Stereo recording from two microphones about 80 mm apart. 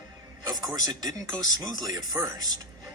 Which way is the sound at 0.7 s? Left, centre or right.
Right.